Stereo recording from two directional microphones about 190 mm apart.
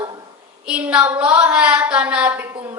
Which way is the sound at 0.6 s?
5° right (ahead or behind).